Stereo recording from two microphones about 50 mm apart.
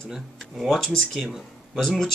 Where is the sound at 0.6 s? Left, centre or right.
Centre.